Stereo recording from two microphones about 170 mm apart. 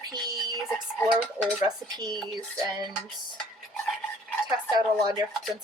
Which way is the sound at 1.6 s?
25° right (ahead or behind).